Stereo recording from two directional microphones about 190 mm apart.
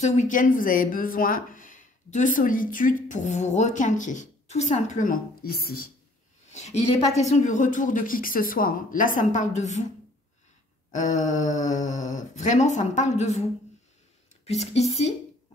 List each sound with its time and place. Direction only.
0.0 s a woman's voice: 40° left (ahead or behind)
6.5 s a woman's voice: 35° left (ahead or behind)
10.9 s speech: 40° left (ahead or behind)
14.4 s speech: 35° left (ahead or behind)